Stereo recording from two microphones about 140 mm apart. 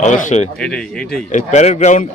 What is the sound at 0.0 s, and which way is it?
Speech, 60° left (ahead or behind).